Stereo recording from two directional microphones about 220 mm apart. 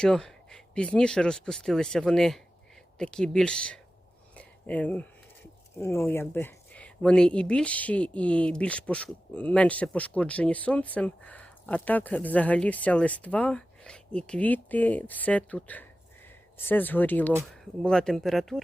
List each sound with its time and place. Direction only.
0.0 s speech: 5° left (ahead or behind)
4.4 s a sound: 5° left (ahead or behind)
5.8 s speech: 10° left (ahead or behind)